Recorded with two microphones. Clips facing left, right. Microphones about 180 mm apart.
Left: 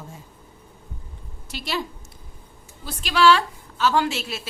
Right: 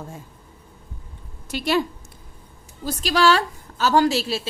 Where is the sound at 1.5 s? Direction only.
50° right (ahead or behind).